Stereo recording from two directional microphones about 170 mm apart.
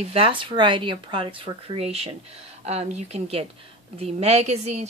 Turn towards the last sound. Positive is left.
turn(degrees=-40)  # may be behind; listen again after turning